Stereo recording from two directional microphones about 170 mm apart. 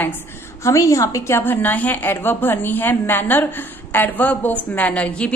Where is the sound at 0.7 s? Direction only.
20° left (ahead or behind).